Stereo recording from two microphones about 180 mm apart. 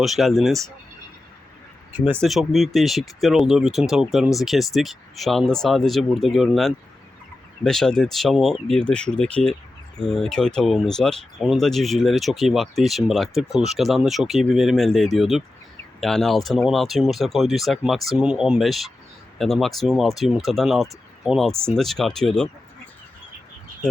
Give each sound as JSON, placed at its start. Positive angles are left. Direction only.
{"t": 0.0, "sound": "speech", "side_deg": 0}
{"t": 2.2, "sound": "speech", "side_deg": 0}